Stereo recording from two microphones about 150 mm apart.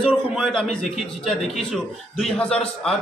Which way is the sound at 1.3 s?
Centre (ahead or behind).